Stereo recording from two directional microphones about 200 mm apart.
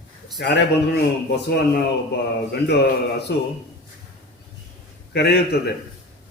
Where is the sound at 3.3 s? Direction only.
60° left (ahead or behind).